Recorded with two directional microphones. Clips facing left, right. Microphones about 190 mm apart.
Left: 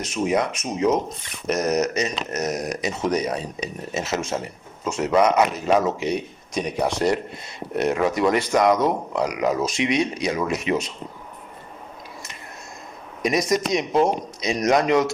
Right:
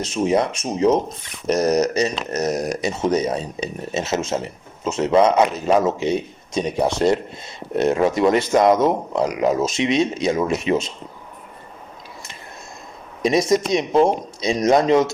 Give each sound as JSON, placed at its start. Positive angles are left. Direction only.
{"t": 0.0, "sound": "speech", "side_deg": -30}
{"t": 13.2, "sound": "speech", "side_deg": -25}